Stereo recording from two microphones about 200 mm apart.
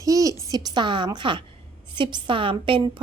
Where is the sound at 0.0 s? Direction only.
15° right (ahead or behind).